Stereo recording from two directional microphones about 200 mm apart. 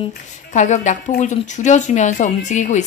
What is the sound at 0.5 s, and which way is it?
Speech, 35° left (ahead or behind).